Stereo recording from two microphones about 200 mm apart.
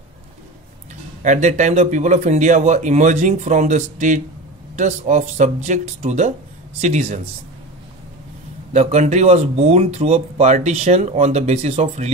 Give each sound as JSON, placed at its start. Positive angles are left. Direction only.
{"t": 1.2, "sound": "speech", "side_deg": -35}
{"t": 8.7, "sound": "speech", "side_deg": -35}